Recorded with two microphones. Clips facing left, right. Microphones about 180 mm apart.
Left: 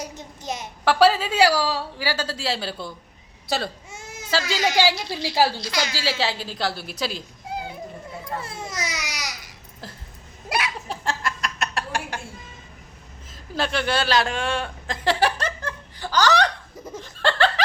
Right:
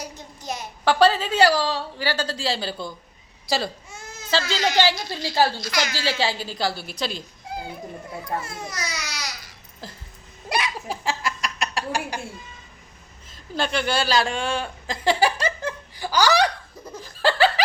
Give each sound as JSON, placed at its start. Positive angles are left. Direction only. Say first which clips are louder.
{"t": 0.0, "sound": "a sound", "louder": "left 2 dB", "side_deg": 20}
{"t": 0.9, "sound": "a woman's voice", "louder": "even", "side_deg": 5}
{"t": 3.9, "sound": "baby cry", "louder": "left 1 dB", "side_deg": 15}
{"t": 4.3, "sound": "a woman's voice", "louder": "even", "side_deg": 10}
{"t": 5.5, "sound": "a woman's voice", "louder": "even", "side_deg": 30}
{"t": 5.9, "sound": "a woman's voice", "louder": "right 1 dB", "side_deg": 5}
{"t": 8.4, "sound": "babbling", "louder": "left 1 dB", "side_deg": 30}
{"t": 9.8, "sound": "a sound", "louder": "even", "side_deg": 0}
{"t": 10.8, "sound": "chuckle", "louder": "right 1 dB", "side_deg": 0}
{"t": 13.3, "sound": "a man's voice", "louder": "even", "side_deg": 0}
{"t": 15.6, "sound": "laughter", "louder": "right 3 dB", "side_deg": -10}